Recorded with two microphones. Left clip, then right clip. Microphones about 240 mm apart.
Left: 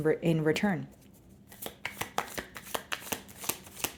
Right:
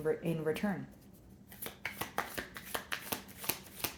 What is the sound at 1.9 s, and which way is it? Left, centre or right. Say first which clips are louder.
Shuffling cards: left 4 dB; left.